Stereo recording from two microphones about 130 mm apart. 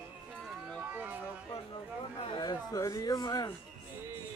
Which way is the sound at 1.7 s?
40° left (ahead or behind).